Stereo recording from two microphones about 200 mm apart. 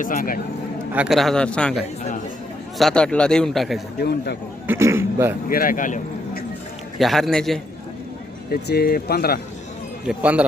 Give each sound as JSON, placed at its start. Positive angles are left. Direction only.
{"t": 0.0, "sound": "speech", "side_deg": 45}
{"t": 0.9, "sound": "a man's voice", "side_deg": 0}
{"t": 4.0, "sound": "a man's voice", "side_deg": 55}
{"t": 4.6, "sound": "a sound", "side_deg": -10}
{"t": 5.5, "sound": "speech", "side_deg": 45}
{"t": 7.0, "sound": "a man's voice", "side_deg": 0}
{"t": 8.4, "sound": "speech", "side_deg": 50}
{"t": 10.1, "sound": "speech", "side_deg": -5}